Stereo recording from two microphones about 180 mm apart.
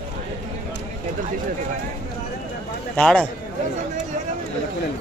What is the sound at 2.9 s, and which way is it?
Speech, 5° left (ahead or behind).